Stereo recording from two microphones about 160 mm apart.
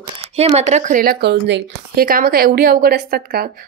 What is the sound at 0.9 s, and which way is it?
A woman's voice, 65° right (ahead or behind).